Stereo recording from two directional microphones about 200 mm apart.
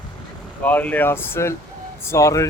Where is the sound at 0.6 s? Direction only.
10° left (ahead or behind).